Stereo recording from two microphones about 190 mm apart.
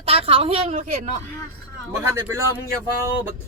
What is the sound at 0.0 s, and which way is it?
A woman's voice, 30° right (ahead or behind).